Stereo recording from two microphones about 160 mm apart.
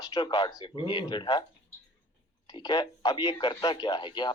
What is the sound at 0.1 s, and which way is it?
Speech, 30° left (ahead or behind).